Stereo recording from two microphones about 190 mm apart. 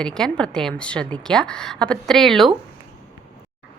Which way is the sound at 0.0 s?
5° left (ahead or behind).